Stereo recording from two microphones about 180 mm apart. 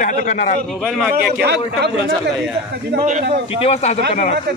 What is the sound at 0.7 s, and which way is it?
Speech, centre (ahead or behind).